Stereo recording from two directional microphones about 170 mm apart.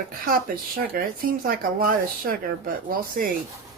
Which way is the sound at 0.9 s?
60° right (ahead or behind).